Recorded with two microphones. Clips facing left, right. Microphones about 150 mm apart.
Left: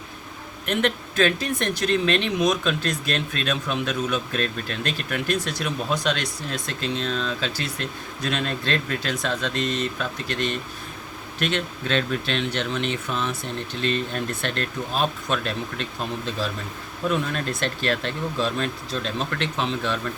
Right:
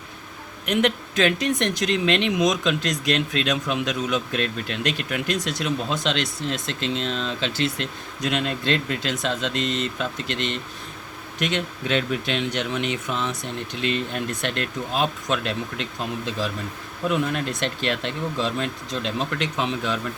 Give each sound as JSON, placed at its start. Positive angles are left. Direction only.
{"t": 0.6, "sound": "speech", "side_deg": -15}